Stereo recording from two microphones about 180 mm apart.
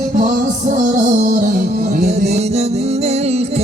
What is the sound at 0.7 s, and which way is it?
Music, 40° right (ahead or behind).